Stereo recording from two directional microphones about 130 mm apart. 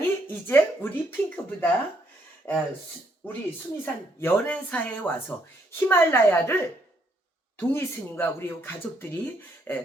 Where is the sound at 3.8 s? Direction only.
15° left (ahead or behind).